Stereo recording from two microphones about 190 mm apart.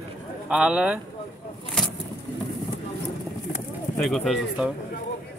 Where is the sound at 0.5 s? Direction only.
5° right (ahead or behind).